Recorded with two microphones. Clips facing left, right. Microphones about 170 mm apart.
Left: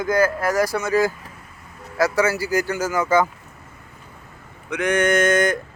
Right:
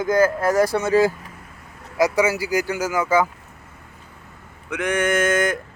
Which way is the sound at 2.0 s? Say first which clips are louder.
Right 1 dB; 15° right (ahead or behind).